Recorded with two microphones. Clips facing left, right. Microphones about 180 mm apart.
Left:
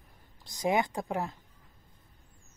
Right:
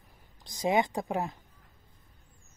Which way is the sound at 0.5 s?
25° right (ahead or behind).